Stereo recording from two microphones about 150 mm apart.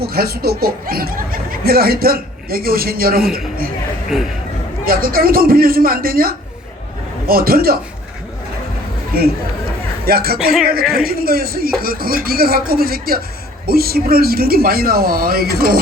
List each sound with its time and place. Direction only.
0.0 s speech: 90° right
4.1 s speech: 5° right (ahead or behind)
4.9 s speech: 75° right (ahead or behind)
9.1 s speech: 80° right
10.3 s speech: centre (ahead or behind)
10.9 s speech: 85° right